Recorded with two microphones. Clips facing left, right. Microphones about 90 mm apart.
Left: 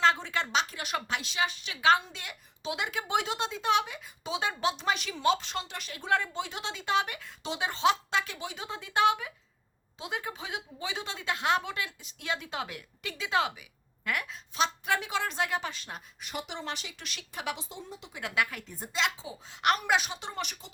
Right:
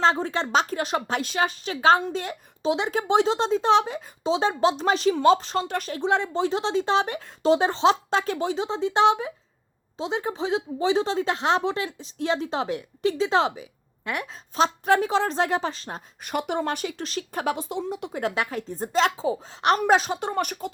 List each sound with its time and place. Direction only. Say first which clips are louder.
0.0 s a woman's voice: right 4 dB; 35° right (ahead or behind)
6.0 s a woman's voice: right 6 dB; 25° right (ahead or behind)
8.5 s a woman's voice: right 4 dB; 25° right (ahead or behind)
14.5 s a woman's voice: right 8 dB; 40° right (ahead or behind)
16.2 s speech: right 12 dB; 55° right (ahead or behind)
17.0 s a woman's voice: right 11 dB; 40° right (ahead or behind)
17.7 s speech: right 14 dB; 80° right
18.1 s a woman's voice: right 3 dB; 35° right (ahead or behind)